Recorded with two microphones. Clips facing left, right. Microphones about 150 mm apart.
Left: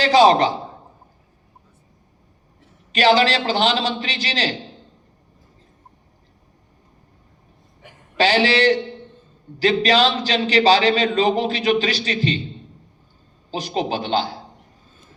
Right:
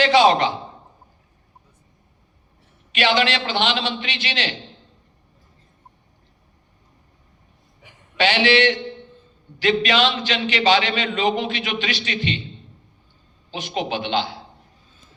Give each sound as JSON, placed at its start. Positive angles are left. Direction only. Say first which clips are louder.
{"t": 0.0, "sound": "a man's voice", "louder": "left 2 dB", "side_deg": 35}
{"t": 2.9, "sound": "a man's voice", "louder": "left 4 dB", "side_deg": 35}
{"t": 8.1, "sound": "a man's voice", "louder": "left 1 dB", "side_deg": 35}
{"t": 13.5, "sound": "a man's voice", "louder": "left 2 dB", "side_deg": 40}